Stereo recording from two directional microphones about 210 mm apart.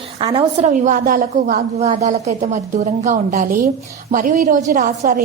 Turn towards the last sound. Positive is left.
turn(degrees=-40)  # may be behind; listen again after turning